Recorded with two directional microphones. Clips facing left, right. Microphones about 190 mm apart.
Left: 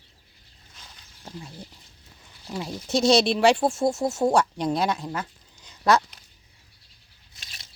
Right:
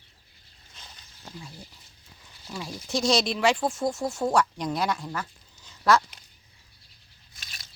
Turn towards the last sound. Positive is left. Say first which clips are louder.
# even
turn(degrees=25)  # may be behind; listen again after turning